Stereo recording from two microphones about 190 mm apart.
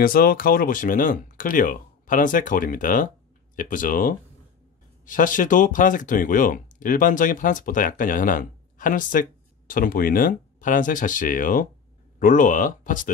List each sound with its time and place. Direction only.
0.0 s speech: 50° left (ahead or behind)